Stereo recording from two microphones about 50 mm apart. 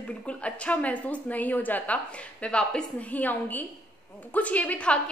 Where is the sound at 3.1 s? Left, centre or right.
Left.